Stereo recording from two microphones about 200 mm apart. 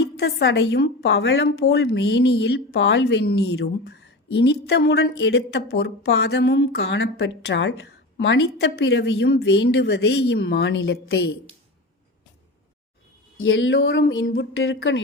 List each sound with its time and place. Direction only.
0.2 s a woman's voice: 55° left (ahead or behind)
13.4 s speech: 70° left (ahead or behind)
14.5 s speech: 85° left
14.8 s speech: 70° left (ahead or behind)